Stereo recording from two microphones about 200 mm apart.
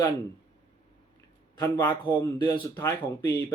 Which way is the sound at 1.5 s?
15° left (ahead or behind).